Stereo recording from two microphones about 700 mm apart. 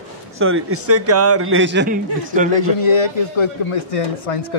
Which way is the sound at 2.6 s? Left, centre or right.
Left.